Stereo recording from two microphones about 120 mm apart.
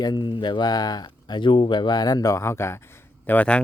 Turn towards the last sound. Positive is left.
turn(degrees=10)  # may be behind; listen again after turning